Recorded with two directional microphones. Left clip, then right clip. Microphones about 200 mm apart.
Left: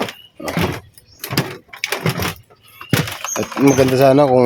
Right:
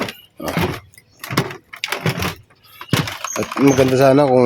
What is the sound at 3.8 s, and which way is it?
Speech, centre (ahead or behind).